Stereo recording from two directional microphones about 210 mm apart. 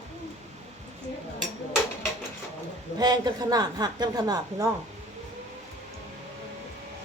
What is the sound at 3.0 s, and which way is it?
A woman's voice, 20° right (ahead or behind).